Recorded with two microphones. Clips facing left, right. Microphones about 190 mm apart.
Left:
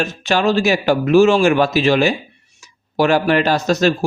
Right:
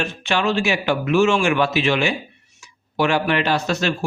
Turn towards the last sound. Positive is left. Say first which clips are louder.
# left 5 dB
turn(degrees=40)  # may be behind; listen again after turning